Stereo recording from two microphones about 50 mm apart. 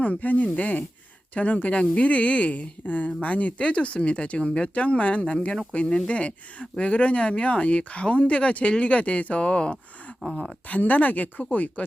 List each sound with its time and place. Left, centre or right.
0.0 s speech: left; by 10.5 s centre
10.7 s speech: left